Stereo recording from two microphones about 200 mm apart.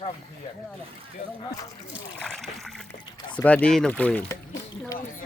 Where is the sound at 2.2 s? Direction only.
5° left (ahead or behind).